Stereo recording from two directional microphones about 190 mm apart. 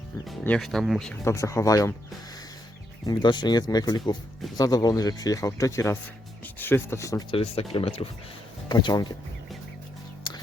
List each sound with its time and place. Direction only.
0.3 s speech: 5° left (ahead or behind)
1.2 s speech: 15° left (ahead or behind)
3.1 s speech: 20° left (ahead or behind)
10.3 s music: 25° left (ahead or behind)